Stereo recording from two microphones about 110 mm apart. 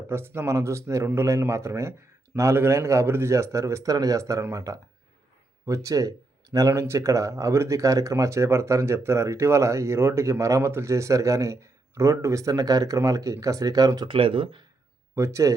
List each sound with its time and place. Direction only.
0.1 s speech: 20° right (ahead or behind)
14.1 s speech: 55° right (ahead or behind)
15.1 s speech: 25° right (ahead or behind)